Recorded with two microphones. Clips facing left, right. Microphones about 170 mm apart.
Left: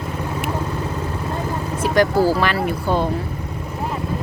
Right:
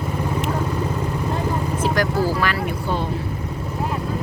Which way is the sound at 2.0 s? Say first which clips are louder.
Left 7 dB; 25° left (ahead or behind).